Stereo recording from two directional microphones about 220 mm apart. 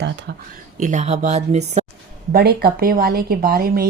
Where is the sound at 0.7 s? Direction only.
35° right (ahead or behind).